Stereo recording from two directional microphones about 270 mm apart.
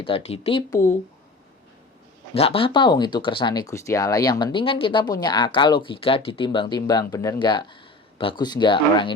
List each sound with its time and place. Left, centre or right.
0.0 s speech: left
2.3 s speech: left